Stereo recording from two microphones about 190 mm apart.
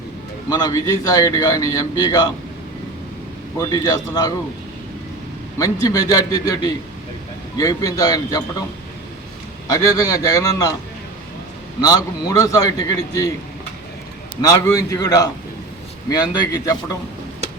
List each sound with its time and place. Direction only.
0.5 s a man's voice: 20° left (ahead or behind)
3.6 s a man's voice: 15° left (ahead or behind)
5.5 s a man's voice: 20° left (ahead or behind)
9.6 s a man's voice: 20° left (ahead or behind)
11.8 s a man's voice: 20° left (ahead or behind)
14.4 s a man's voice: 15° left (ahead or behind)